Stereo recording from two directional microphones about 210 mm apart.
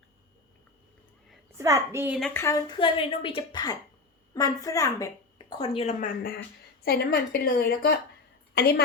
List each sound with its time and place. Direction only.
1.5 s a woman's voice: 15° right (ahead or behind)
2.1 s a woman's voice: 5° left (ahead or behind); by 8.8 s 50° left (ahead or behind)